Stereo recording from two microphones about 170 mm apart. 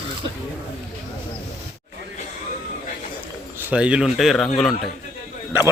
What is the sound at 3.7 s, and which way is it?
Speech, 5° right (ahead or behind).